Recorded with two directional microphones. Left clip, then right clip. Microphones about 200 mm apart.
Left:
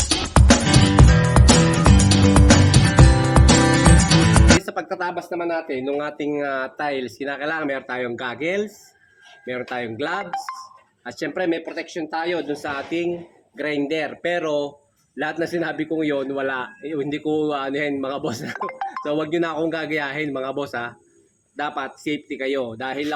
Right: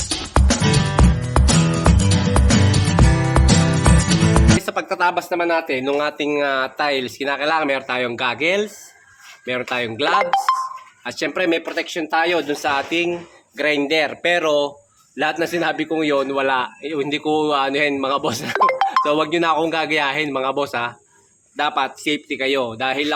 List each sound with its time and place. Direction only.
0.0 s music: centre (ahead or behind)
4.9 s speech: 55° right (ahead or behind)
6.0 s speech: 10° left (ahead or behind)
7.9 s speech: 55° right (ahead or behind)
8.2 s speech: 10° left (ahead or behind)
10.1 s speech: 55° right (ahead or behind)
11.0 s speech: 10° left (ahead or behind)
11.4 s speech: 55° right (ahead or behind)
12.5 s speech: 10° left (ahead or behind)
18.5 s music: 50° right (ahead or behind)
19.0 s speech: 10° left (ahead or behind)